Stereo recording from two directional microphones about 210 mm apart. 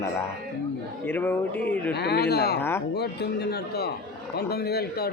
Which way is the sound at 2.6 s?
10° left (ahead or behind).